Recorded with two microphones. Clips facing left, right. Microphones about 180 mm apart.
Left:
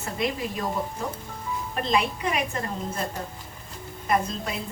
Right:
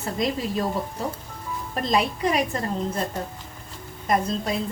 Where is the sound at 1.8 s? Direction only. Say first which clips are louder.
Right 2 dB; 35° right (ahead or behind).